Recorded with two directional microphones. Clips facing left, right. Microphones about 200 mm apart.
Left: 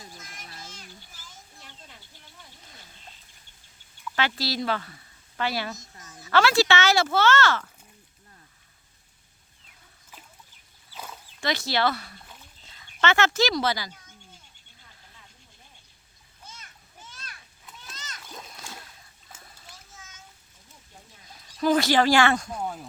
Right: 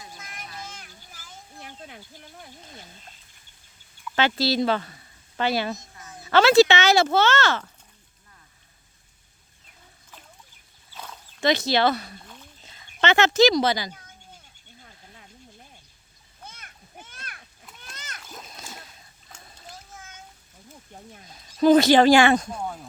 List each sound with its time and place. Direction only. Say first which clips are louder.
0.3 s children playing: right 5 dB; 55° right (ahead or behind)
4.1 s speech: right 6 dB; 25° right (ahead or behind)
10.9 s a sound: even; 5° left (ahead or behind)
11.3 s speech: right 5 dB; 20° right (ahead or behind)
16.4 s a sound: right 3 dB; 55° right (ahead or behind)
17.9 s splash: right 3 dB; 60° right (ahead or behind)
18.6 s splash: right 1 dB; 20° right (ahead or behind)
19.9 s a sound: right 6 dB; 55° right (ahead or behind)
21.6 s speech: right 6 dB; 20° right (ahead or behind)